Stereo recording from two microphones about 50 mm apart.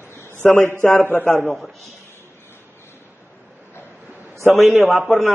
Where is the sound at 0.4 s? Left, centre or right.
Left.